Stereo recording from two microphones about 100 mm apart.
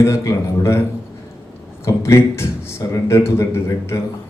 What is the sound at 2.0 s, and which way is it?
A man's voice, 25° left (ahead or behind).